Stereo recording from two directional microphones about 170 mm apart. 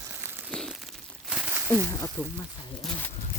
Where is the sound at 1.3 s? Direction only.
5° right (ahead or behind).